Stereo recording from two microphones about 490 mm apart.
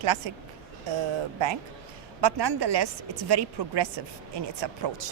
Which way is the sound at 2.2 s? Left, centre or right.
Right.